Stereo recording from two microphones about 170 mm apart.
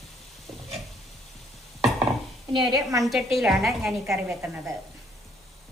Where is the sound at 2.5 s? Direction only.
25° right (ahead or behind).